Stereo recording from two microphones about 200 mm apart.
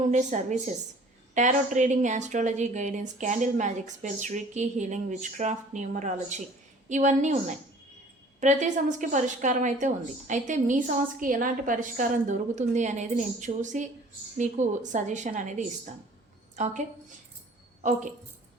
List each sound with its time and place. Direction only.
0.1 s a woman's voice: 35° right (ahead or behind)